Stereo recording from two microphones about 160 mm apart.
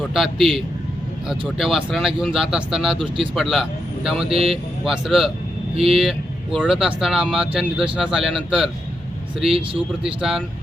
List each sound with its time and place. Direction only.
0.1 s speech: centre (ahead or behind)
5.7 s speech: 35° right (ahead or behind)
6.0 s speech: centre (ahead or behind)
10.2 s speech: 5° right (ahead or behind)